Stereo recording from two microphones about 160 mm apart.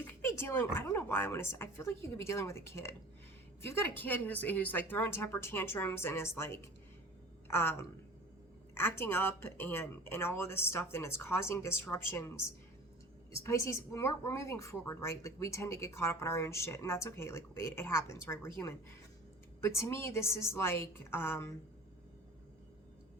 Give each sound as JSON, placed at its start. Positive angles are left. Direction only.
{"t": 0.1, "sound": "a woman's voice", "side_deg": 15}
{"t": 13.3, "sound": "a woman's voice", "side_deg": 20}